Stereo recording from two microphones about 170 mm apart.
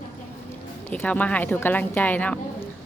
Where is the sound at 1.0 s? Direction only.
10° left (ahead or behind).